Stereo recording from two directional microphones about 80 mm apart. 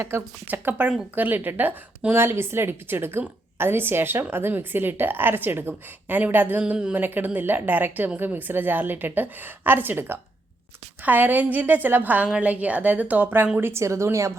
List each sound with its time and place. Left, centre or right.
0.4 s a woman's voice: right
2.1 s a woman's voice: right
6.6 s a woman's voice: centre
6.9 s a woman's voice: right